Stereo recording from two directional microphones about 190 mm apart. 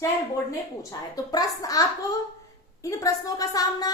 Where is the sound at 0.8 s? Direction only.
20° left (ahead or behind).